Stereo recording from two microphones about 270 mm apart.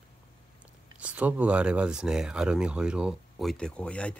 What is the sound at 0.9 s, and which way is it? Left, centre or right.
Speech, centre.